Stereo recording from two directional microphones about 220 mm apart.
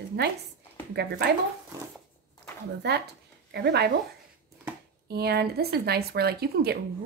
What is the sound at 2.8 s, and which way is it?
Speech, 50° right (ahead or behind).